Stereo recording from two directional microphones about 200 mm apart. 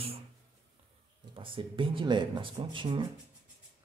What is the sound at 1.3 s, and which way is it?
Speech, 25° right (ahead or behind).